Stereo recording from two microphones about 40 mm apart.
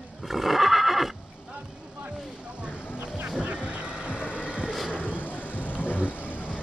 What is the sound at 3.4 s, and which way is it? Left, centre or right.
Music, right.